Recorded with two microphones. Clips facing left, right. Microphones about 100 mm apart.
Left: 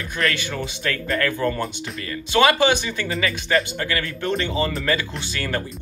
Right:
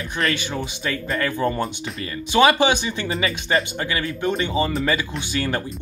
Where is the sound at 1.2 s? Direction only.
25° right (ahead or behind).